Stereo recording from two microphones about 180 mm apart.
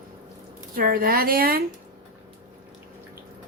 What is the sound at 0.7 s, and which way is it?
Speech, 55° right (ahead or behind).